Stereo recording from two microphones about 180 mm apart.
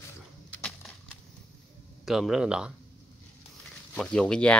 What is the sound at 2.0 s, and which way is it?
Speech, centre (ahead or behind).